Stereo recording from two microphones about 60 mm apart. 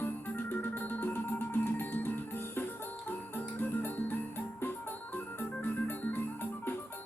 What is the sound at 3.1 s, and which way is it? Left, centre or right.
Music, left.